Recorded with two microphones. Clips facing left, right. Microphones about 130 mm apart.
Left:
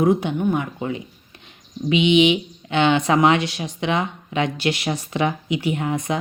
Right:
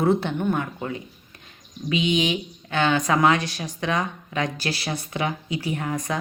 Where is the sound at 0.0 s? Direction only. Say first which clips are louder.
Left 3 dB; 15° left (ahead or behind).